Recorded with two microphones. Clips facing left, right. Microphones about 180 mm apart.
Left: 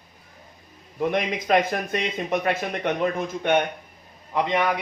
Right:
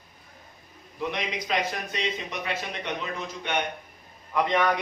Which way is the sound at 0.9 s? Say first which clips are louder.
Left 7 dB; 50° left (ahead or behind).